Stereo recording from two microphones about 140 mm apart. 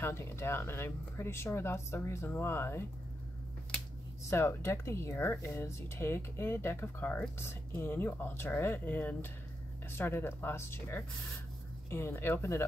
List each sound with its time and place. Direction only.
0.0 s speech: 20° left (ahead or behind)
4.2 s speech: 20° left (ahead or behind)